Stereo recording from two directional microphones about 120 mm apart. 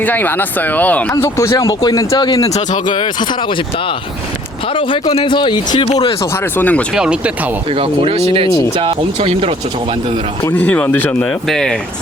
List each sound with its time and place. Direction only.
0.0 s speech: 15° left (ahead or behind)
1.1 s speech: 25° left (ahead or behind)
2.5 s speech: 75° left (ahead or behind)
2.8 s speech: 40° left (ahead or behind)
4.7 s speech: 45° left (ahead or behind)
6.3 s speech: 15° left (ahead or behind)
6.9 s speech: 5° right (ahead or behind)
7.7 s speech: 50° right (ahead or behind)
10.4 s speech: 15° left (ahead or behind)